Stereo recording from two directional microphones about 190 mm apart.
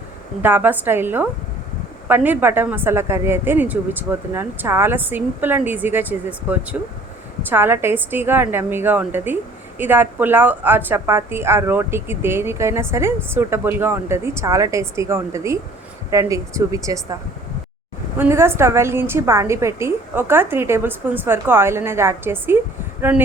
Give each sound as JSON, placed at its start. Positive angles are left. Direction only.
{"t": 0.4, "sound": "a woman's voice", "side_deg": -10}
{"t": 18.2, "sound": "a woman's voice", "side_deg": -15}